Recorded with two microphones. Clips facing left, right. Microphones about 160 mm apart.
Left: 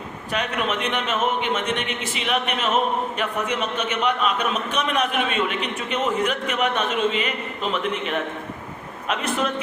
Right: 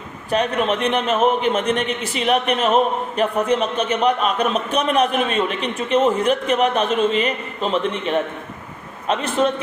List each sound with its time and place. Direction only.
0.3 s a man's voice: 35° right (ahead or behind)